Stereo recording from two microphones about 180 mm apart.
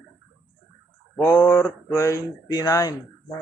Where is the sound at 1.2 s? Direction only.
15° left (ahead or behind).